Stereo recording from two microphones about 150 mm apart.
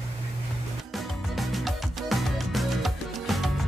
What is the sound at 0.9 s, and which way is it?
Music, centre (ahead or behind).